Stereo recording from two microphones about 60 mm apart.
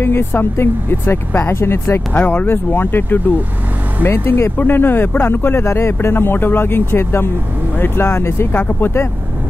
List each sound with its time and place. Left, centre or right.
0.0 s speech: left
4.1 s speech: left